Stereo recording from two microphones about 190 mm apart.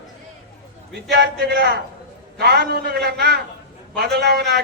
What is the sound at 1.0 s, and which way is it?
A man's voice, 60° right (ahead or behind).